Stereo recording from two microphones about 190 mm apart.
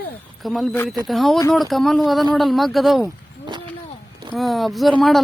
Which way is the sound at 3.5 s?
25° right (ahead or behind).